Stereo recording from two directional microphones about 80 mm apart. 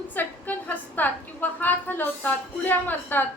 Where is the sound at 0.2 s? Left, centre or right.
Left.